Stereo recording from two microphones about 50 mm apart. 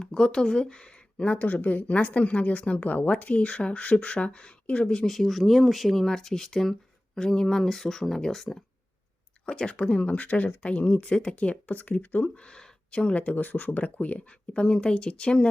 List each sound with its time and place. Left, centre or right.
0.0 s speech: centre
1.4 s a woman's voice: left
5.0 s speech: centre
6.1 s speech: centre
9.5 s a woman's voice: centre
14.6 s speech: centre